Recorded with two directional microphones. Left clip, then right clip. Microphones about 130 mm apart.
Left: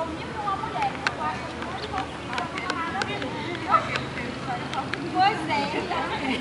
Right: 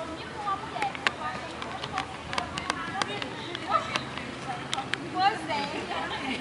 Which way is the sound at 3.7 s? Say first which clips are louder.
Left 5 dB; 15° right (ahead or behind).